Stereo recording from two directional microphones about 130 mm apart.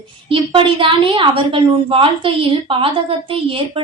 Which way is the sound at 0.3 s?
40° right (ahead or behind).